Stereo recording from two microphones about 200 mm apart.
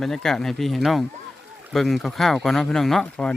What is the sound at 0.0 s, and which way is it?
Speech, centre (ahead or behind).